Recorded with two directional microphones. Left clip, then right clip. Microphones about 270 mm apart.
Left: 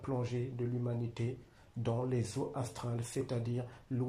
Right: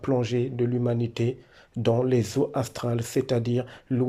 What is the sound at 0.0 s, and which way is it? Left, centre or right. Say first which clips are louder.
Speech: right 13 dB; right.